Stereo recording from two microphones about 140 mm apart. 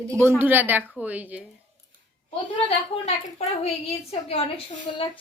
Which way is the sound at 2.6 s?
50° left (ahead or behind).